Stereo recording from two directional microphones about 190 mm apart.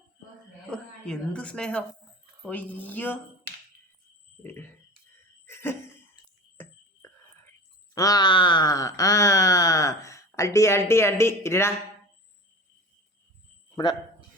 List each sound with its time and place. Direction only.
0.7 s a woman's voice: 5° left (ahead or behind)
2.4 s wail: 10° left (ahead or behind)
4.4 s a sound: 10° left (ahead or behind)
7.9 s wail: 20° left (ahead or behind)